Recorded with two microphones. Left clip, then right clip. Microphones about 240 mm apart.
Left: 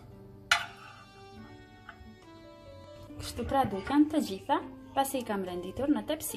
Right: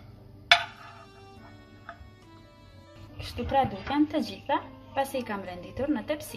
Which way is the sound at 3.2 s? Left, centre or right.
Centre.